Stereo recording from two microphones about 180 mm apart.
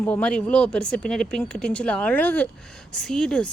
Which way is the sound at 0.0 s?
10° left (ahead or behind).